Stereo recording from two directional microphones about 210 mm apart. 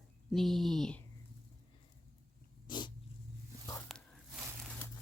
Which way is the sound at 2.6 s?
20° left (ahead or behind).